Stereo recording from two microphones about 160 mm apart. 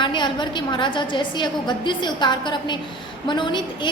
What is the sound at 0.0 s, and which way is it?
A woman's voice, 30° left (ahead or behind).